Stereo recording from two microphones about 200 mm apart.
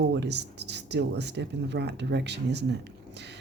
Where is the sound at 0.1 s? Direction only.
60° right (ahead or behind).